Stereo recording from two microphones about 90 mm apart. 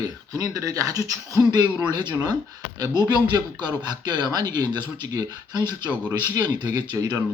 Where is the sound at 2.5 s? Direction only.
45° right (ahead or behind).